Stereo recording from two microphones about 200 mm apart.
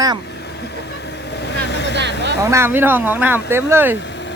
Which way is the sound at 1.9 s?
60° right (ahead or behind).